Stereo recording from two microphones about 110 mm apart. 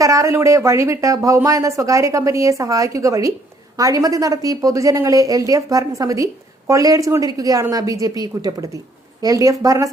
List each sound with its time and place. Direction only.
0.0 s a woman's voice: 30° right (ahead or behind)